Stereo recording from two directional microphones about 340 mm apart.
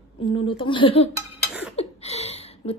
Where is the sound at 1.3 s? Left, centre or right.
Centre.